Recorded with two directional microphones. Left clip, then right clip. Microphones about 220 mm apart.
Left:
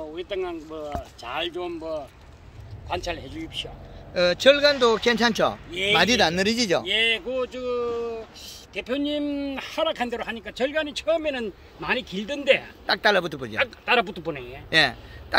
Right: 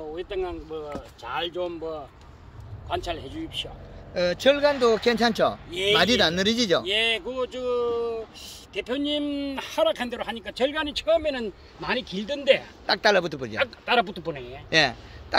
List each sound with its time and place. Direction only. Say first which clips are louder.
0.1 s speech: right 1 dB; 10° left (ahead or behind)
1.2 s a man's voice: right 1 dB; 20° left (ahead or behind)
5.7 s speech: even; 5° right (ahead or behind)
5.9 s speech: left 2 dB; 5° left (ahead or behind)
13.6 s a man's voice: left 1 dB; 10° left (ahead or behind)
14.7 s speech: left 1 dB; 10° right (ahead or behind)